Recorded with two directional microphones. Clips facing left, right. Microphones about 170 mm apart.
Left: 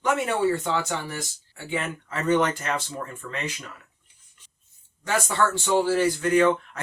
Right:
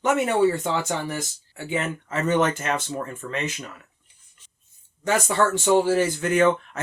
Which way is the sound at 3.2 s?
40° right (ahead or behind).